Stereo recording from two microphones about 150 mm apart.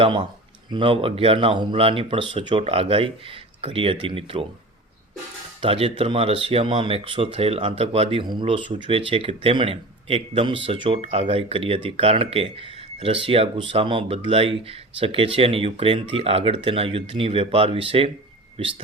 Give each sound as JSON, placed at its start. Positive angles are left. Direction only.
{"t": 0.0, "sound": "speech", "side_deg": -35}
{"t": 5.6, "sound": "speech", "side_deg": -40}